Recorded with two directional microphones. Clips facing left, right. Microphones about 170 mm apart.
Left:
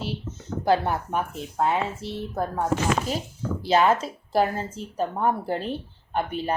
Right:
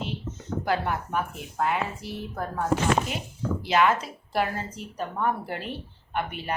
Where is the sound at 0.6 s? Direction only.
30° left (ahead or behind).